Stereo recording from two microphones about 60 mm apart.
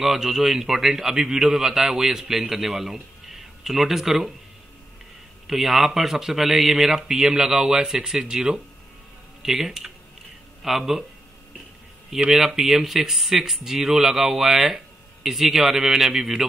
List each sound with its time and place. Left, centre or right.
0.0 s a man's voice: centre
5.5 s a man's voice: centre
12.1 s speech: centre